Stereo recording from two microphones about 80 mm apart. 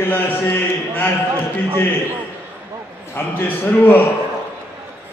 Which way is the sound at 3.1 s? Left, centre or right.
Left.